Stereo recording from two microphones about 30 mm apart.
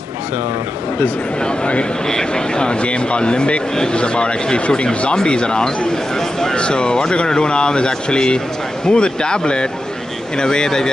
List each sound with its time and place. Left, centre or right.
2.0 s speech: left